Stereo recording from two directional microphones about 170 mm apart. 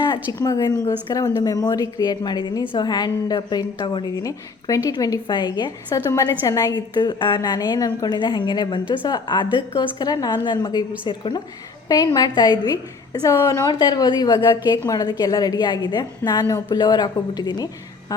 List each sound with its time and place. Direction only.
0.3 s a woman's voice: 20° left (ahead or behind)